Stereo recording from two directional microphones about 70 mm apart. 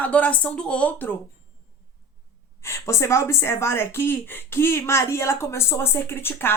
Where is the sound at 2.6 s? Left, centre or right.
Left.